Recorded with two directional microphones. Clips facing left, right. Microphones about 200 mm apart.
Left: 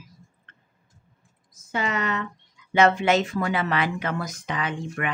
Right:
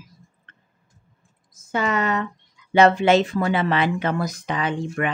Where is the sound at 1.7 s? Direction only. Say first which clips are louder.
Right 4 dB; 45° right (ahead or behind).